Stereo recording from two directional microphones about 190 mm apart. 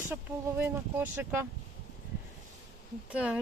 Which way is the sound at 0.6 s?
10° right (ahead or behind).